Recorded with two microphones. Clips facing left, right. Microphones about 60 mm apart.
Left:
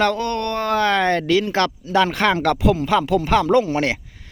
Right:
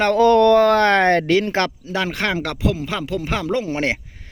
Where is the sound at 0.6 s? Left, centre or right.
Right.